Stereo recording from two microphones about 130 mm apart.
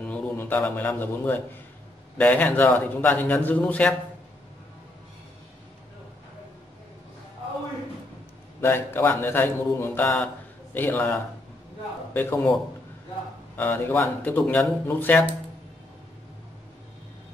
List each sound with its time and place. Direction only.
0.0 s a man's voice: 10° left (ahead or behind)
8.5 s a man's voice: 15° left (ahead or behind)
13.6 s a man's voice: 15° left (ahead or behind)